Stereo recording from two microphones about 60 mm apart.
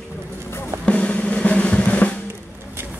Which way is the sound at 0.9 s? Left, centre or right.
Left.